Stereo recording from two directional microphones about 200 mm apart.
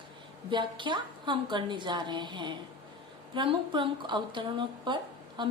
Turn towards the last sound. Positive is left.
turn(degrees=-25)  # may be behind; listen again after turning